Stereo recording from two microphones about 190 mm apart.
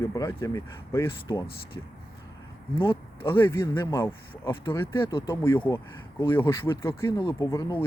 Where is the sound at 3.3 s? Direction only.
15° left (ahead or behind).